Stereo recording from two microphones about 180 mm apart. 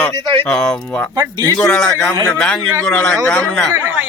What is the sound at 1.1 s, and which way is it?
Speech, 25° right (ahead or behind).